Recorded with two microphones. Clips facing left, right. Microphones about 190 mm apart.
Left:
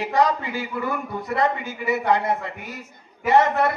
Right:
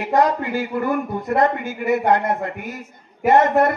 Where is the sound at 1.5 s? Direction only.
55° right (ahead or behind).